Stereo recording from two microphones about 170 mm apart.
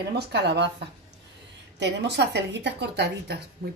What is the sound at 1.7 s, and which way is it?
A woman's voice, 85° right.